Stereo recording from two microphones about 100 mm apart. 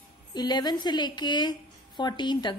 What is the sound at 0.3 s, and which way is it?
A woman's voice, 45° left (ahead or behind).